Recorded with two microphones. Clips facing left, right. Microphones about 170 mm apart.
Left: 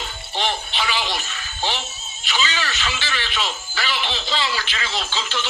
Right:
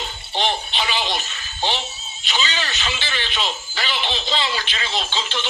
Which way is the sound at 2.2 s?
25° right (ahead or behind).